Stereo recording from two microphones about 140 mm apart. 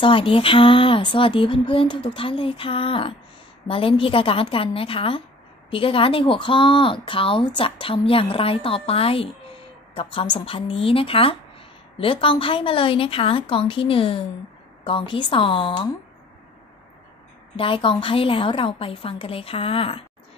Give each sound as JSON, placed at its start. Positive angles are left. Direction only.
{"t": 0.0, "sound": "speech", "side_deg": 40}
{"t": 17.6, "sound": "speech", "side_deg": 40}